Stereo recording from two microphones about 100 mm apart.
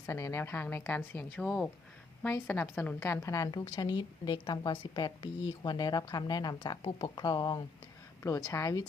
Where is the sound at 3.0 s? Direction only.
30° left (ahead or behind); by 7.6 s 45° left (ahead or behind).